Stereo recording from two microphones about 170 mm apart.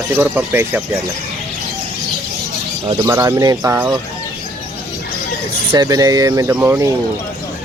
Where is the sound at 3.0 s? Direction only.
20° right (ahead or behind).